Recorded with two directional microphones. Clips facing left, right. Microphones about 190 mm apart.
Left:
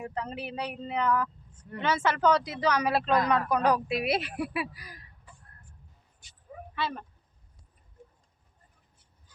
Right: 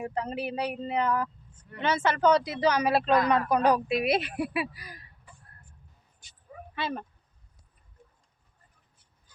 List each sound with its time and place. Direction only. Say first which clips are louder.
0.0 s speech: right 4 dB; 10° right (ahead or behind)
6.7 s speech: right 1 dB; 20° right (ahead or behind)